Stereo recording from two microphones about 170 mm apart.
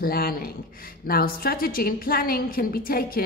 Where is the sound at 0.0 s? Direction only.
60° left (ahead or behind).